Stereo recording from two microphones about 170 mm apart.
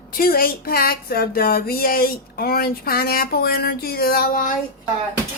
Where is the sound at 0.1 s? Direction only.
60° left (ahead or behind).